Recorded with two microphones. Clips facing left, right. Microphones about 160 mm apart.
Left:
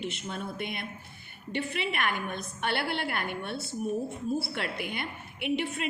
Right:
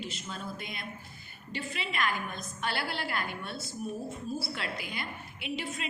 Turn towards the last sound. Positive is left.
turn(degrees=60)  # may be behind; listen again after turning